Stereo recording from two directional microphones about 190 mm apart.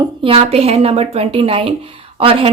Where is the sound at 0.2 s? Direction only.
30° right (ahead or behind).